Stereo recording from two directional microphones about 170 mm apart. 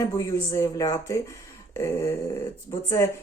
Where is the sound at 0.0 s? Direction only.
20° left (ahead or behind).